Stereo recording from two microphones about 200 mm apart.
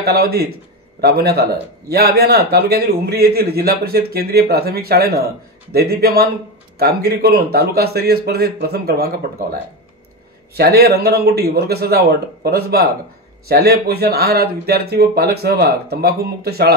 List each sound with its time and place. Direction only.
0.0 s a man's voice: 50° right (ahead or behind)